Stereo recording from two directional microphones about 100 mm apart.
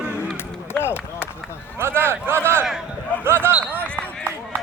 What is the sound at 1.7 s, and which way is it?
Speech, 25° right (ahead or behind).